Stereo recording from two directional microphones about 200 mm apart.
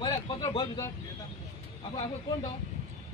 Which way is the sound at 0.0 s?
25° left (ahead or behind).